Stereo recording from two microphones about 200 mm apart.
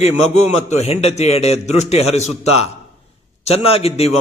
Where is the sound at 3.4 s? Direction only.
30° left (ahead or behind).